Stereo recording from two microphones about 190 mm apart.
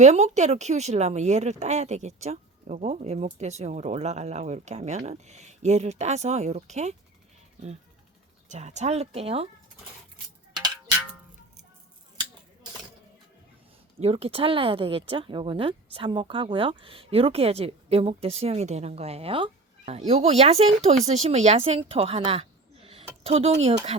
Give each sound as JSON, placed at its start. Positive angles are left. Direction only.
{"t": 0.0, "sound": "speech", "side_deg": -35}
{"t": 8.4, "sound": "speech", "side_deg": -40}
{"t": 14.0, "sound": "a woman's voice", "side_deg": -30}